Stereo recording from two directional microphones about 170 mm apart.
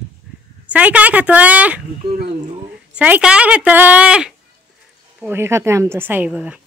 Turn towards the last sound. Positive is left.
turn(degrees=-5)  # may be behind; listen again after turning